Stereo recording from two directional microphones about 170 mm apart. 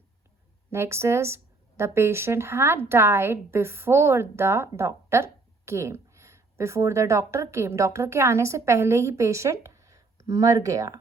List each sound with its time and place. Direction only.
0.7 s speech: 15° right (ahead or behind)